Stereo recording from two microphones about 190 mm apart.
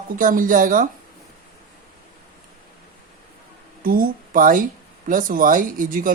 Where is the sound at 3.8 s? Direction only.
50° right (ahead or behind).